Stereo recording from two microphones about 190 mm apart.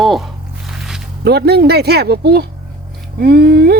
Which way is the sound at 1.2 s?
60° right (ahead or behind).